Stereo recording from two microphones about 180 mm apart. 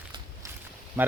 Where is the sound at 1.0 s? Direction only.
10° right (ahead or behind).